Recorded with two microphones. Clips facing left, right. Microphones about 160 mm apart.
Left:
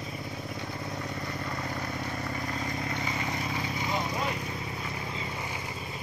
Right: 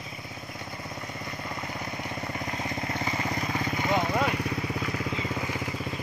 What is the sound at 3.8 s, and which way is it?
Vehicle, 70° right (ahead or behind).